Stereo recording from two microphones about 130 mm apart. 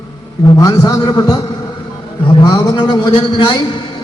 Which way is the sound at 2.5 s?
35° left (ahead or behind).